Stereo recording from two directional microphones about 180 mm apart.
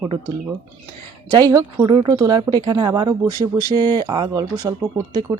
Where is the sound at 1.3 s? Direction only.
20° right (ahead or behind).